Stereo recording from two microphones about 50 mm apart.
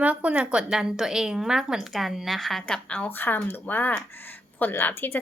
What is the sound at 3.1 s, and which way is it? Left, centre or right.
Speech, left.